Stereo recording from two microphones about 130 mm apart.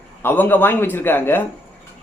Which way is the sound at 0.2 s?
15° left (ahead or behind).